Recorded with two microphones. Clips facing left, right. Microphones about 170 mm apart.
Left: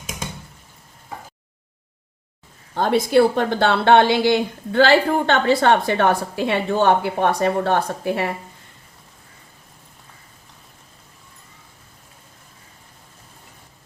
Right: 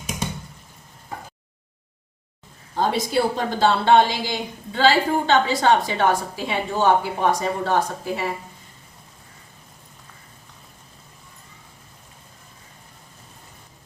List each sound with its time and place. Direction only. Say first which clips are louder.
2.7 s speech: left 5 dB; 60° left (ahead or behind)